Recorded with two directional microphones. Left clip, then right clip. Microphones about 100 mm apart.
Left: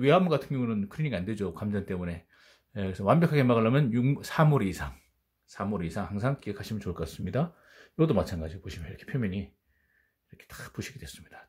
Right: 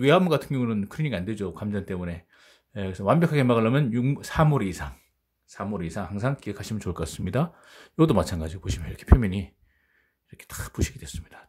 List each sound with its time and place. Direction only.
0.0 s speech: 35° right (ahead or behind)
1.2 s speech: 15° right (ahead or behind); by 9.5 s 50° right (ahead or behind)
10.3 s speech: 40° right (ahead or behind)